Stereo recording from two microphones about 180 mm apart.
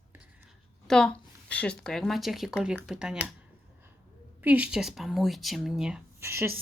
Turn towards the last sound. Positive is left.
turn(degrees=-15)  # may be behind; listen again after turning